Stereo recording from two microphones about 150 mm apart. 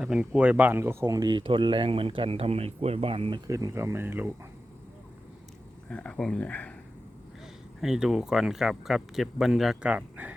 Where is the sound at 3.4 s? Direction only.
20° right (ahead or behind).